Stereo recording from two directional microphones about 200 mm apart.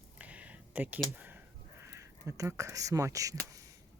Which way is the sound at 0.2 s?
5° right (ahead or behind).